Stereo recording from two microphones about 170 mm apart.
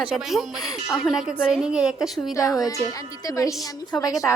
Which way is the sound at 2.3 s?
20° left (ahead or behind).